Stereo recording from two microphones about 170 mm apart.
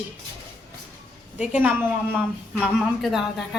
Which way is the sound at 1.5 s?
10° right (ahead or behind).